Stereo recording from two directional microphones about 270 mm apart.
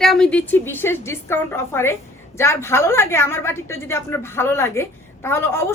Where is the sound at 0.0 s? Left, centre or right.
Centre.